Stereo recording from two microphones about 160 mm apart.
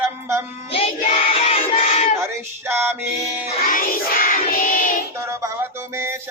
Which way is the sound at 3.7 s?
65° left (ahead or behind).